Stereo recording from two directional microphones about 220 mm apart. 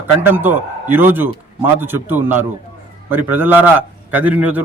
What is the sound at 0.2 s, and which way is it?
A man's voice, 10° right (ahead or behind).